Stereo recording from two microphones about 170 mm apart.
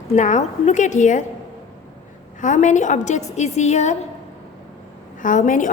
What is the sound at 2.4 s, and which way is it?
A woman's voice, 45° left (ahead or behind).